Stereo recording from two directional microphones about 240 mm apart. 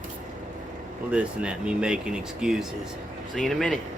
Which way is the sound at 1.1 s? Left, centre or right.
Centre.